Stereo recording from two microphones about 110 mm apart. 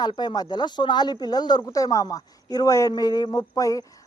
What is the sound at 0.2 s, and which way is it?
Speech, 40° left (ahead or behind).